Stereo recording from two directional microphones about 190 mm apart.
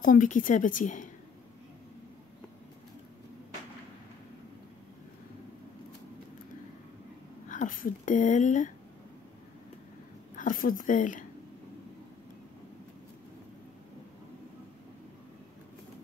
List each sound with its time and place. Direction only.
0.0 s a woman's voice: 45° left (ahead or behind)
7.4 s speech: 45° left (ahead or behind)
10.3 s speech: 45° left (ahead or behind)